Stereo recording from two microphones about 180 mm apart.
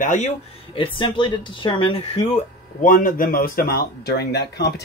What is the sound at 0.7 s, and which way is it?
Speech, 30° left (ahead or behind).